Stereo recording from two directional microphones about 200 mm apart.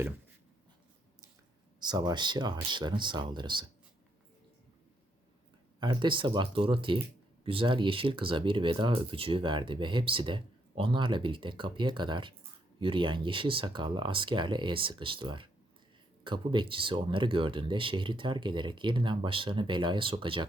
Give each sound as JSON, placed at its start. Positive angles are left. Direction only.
{"t": 1.8, "sound": "speech", "side_deg": -20}
{"t": 5.8, "sound": "speech", "side_deg": -20}